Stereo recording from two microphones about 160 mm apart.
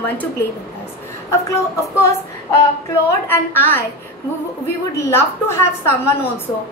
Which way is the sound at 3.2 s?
10° left (ahead or behind).